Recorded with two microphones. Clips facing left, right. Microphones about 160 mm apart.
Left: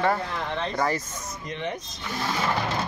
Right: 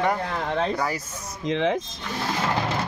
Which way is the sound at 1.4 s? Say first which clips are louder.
Right 9 dB; 90° right.